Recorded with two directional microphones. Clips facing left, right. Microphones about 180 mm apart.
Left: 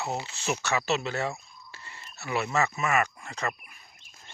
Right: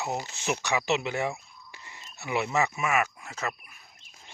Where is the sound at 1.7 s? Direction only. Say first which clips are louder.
Left 1 dB; 15° right (ahead or behind).